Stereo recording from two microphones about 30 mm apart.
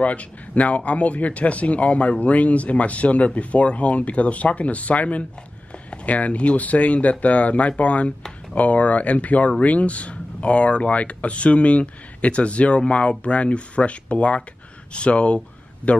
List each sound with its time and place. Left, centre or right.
0.0 s speech: left